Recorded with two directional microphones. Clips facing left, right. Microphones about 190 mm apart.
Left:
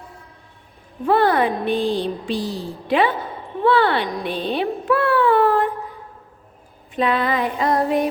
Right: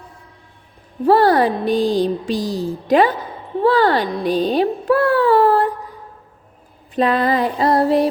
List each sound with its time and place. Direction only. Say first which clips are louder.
1.0 s speech: right 4 dB; 35° right (ahead or behind)
6.9 s speech: right 3 dB; 40° right (ahead or behind)